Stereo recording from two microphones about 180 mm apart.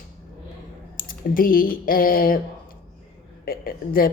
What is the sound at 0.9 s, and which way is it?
Typing, 50° left (ahead or behind).